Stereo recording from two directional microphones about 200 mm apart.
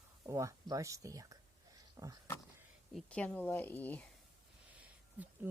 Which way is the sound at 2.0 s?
15° right (ahead or behind).